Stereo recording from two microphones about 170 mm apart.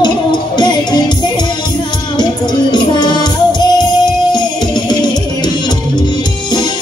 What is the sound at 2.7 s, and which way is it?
Music, 25° left (ahead or behind).